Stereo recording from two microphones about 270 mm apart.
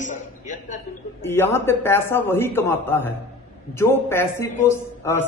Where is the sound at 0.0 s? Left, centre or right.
Left.